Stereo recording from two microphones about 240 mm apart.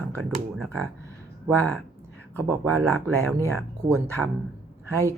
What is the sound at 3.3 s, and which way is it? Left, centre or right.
Speech, centre.